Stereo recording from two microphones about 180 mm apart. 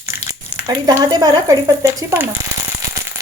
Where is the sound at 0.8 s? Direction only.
20° right (ahead or behind).